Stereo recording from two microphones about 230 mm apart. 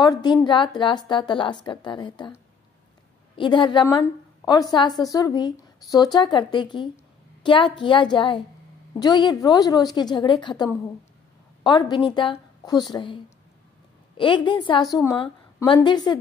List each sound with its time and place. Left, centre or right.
0.0 s a woman's voice: centre
3.3 s a woman's voice: left